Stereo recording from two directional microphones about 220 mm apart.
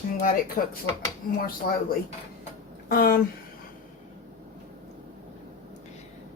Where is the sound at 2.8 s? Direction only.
40° left (ahead or behind).